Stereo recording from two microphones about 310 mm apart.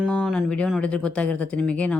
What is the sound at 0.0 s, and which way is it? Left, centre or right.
Speech, centre.